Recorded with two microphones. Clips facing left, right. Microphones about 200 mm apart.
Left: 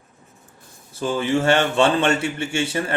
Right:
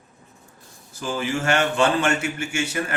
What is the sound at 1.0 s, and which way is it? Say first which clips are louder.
A man's voice: left 5 dB; 25° left (ahead or behind).